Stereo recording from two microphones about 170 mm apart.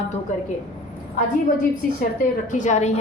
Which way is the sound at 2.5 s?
50° left (ahead or behind).